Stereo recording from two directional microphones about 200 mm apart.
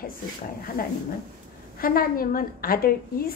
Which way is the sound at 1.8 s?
45° left (ahead or behind).